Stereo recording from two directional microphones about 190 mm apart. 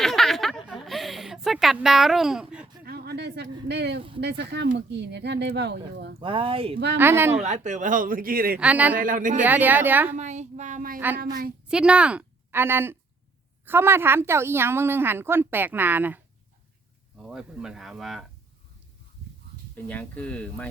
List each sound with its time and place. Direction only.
0.0 s a sound: centre (ahead or behind)
2.8 s a sound: 55° right (ahead or behind)
4.2 s speech: 60° right (ahead or behind)
6.1 s speech: 25° right (ahead or behind)
6.9 s a woman's voice: 10° right (ahead or behind)
7.4 s speech: 40° right (ahead or behind)
8.5 s a woman's voice: 5° right (ahead or behind)
9.0 s speech: 45° right (ahead or behind)
9.4 s a woman's voice: 10° right (ahead or behind)
10.2 s speech: 35° right (ahead or behind)
11.7 s a woman's voice: 5° right (ahead or behind)
19.7 s speech: 5° left (ahead or behind)